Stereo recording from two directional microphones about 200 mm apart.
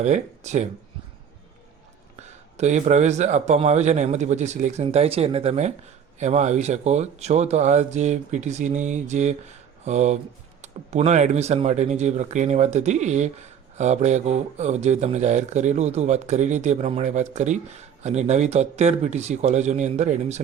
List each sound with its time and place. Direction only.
0.0 s speech: 35° right (ahead or behind)
2.1 s speech: 35° right (ahead or behind)